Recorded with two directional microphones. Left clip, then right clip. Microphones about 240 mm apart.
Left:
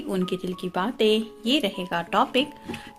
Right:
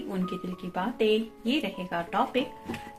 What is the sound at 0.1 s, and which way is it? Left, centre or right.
Speech, left.